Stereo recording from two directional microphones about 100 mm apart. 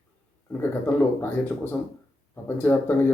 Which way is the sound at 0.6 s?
20° left (ahead or behind).